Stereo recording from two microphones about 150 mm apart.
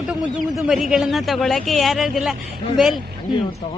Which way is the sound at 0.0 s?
Centre (ahead or behind).